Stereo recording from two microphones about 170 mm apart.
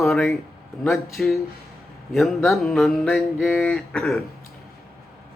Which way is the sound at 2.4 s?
5° left (ahead or behind).